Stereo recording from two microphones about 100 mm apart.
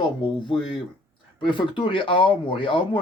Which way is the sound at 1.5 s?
55° left (ahead or behind).